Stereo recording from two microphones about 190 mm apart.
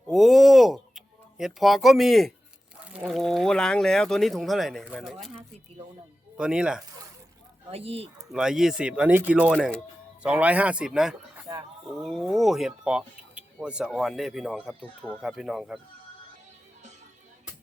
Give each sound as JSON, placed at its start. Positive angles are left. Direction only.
{"t": 0.1, "sound": "a sound", "side_deg": 0}
{"t": 2.9, "sound": "speech", "side_deg": 0}
{"t": 6.3, "sound": "speech", "side_deg": -5}
{"t": 7.7, "sound": "speech", "side_deg": -30}
{"t": 8.3, "sound": "speech", "side_deg": -5}
{"t": 9.5, "sound": "speech", "side_deg": 5}
{"t": 10.2, "sound": "speech", "side_deg": -5}